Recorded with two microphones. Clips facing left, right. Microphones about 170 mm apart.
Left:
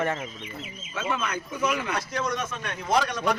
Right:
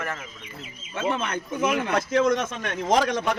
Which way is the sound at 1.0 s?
30° right (ahead or behind).